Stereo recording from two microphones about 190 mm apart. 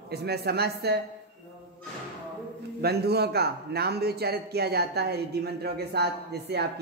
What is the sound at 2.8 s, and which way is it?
A man's voice, 60° right (ahead or behind).